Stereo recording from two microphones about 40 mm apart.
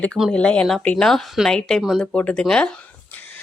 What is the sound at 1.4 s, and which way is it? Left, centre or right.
Speech, centre.